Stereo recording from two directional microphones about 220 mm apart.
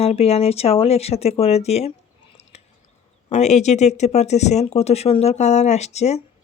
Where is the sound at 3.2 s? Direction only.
30° left (ahead or behind).